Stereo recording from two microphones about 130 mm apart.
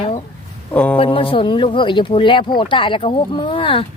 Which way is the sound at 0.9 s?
40° left (ahead or behind).